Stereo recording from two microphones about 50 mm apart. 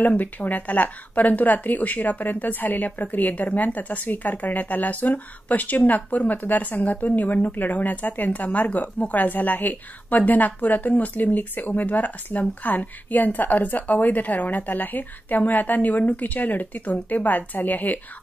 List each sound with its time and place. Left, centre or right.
0.0 s speech: left